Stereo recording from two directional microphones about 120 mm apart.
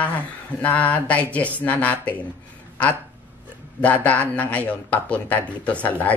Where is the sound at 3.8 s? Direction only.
10° left (ahead or behind).